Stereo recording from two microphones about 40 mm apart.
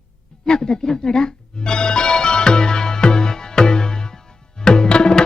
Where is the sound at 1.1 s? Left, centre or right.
Centre.